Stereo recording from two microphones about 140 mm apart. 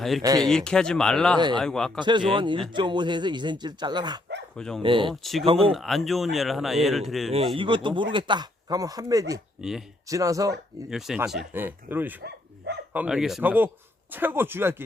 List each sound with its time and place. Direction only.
0.2 s speech: 25° right (ahead or behind)
0.4 s speech: 5° left (ahead or behind)
2.0 s speech: 35° right (ahead or behind)
4.5 s speech: 5° left (ahead or behind)
4.8 s speech: 35° right (ahead or behind)
5.2 s speech: centre (ahead or behind)
7.5 s speech: 35° right (ahead or behind)
9.6 s speech: centre (ahead or behind)
10.1 s speech: 25° right (ahead or behind)
10.8 s speech: 5° right (ahead or behind)
11.5 s speech: 15° right (ahead or behind)